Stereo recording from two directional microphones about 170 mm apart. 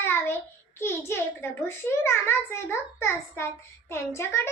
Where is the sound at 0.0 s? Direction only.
15° left (ahead or behind).